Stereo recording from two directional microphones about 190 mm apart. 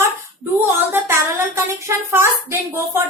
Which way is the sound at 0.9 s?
15° right (ahead or behind).